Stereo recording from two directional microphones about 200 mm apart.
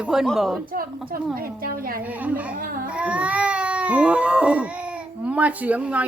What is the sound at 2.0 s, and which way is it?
Speech, 10° right (ahead or behind).